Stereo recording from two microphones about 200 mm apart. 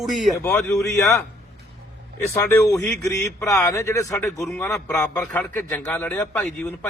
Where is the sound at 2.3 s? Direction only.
15° left (ahead or behind).